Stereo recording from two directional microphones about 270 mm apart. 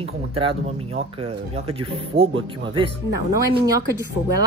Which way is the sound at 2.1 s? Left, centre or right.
Right.